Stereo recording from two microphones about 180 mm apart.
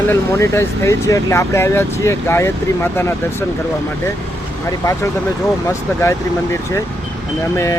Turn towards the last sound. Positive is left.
turn(degrees=15)  # may be behind; listen again after turning